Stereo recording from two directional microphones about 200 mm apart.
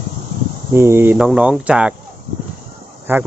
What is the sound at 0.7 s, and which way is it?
Speech, 10° right (ahead or behind).